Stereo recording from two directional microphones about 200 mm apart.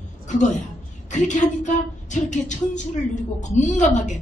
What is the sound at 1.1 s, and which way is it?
Speech, 35° left (ahead or behind).